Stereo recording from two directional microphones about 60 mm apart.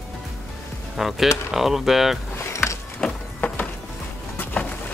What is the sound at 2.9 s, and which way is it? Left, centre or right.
Music, left.